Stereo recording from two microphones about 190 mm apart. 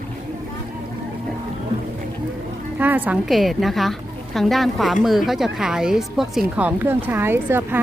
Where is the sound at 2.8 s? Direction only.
10° right (ahead or behind).